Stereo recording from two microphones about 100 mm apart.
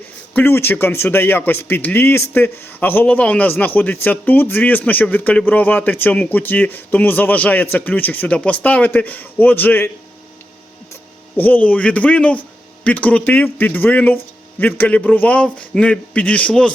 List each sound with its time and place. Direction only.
0.3 s speech: 20° left (ahead or behind)
11.3 s a man's voice: 15° left (ahead or behind)